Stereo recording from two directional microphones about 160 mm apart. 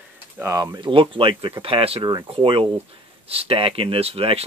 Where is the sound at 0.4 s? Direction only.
20° right (ahead or behind).